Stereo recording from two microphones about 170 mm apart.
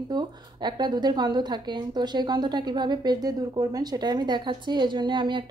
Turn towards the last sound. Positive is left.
turn(degrees=-25)  # may be behind; listen again after turning